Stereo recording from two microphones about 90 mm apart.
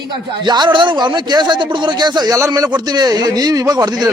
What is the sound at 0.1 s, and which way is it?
Speech, 55° right (ahead or behind).